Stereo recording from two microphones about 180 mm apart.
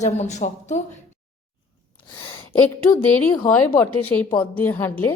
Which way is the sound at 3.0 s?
10° left (ahead or behind).